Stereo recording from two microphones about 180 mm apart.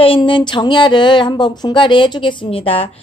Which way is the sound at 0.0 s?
30° left (ahead or behind).